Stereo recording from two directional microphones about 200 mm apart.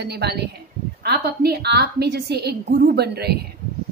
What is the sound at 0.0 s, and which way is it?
A woman's voice, 55° right (ahead or behind).